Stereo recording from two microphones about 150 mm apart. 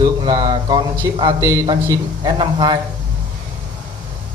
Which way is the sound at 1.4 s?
20° right (ahead or behind).